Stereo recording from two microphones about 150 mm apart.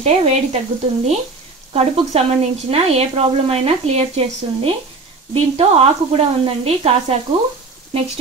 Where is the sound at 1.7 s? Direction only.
45° right (ahead or behind).